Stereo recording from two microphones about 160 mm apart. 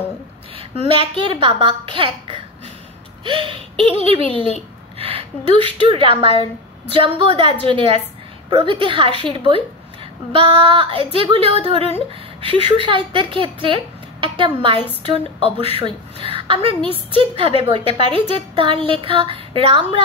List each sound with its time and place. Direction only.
0.6 s a woman's voice: 35° right (ahead or behind)